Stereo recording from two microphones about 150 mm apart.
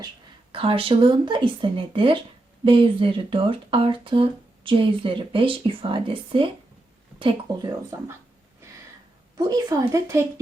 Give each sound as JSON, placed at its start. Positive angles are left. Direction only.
{"t": 0.5, "sound": "speech", "side_deg": -35}
{"t": 9.4, "sound": "speech", "side_deg": -25}